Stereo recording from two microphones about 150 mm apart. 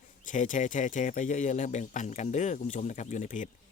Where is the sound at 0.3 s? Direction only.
55° left (ahead or behind).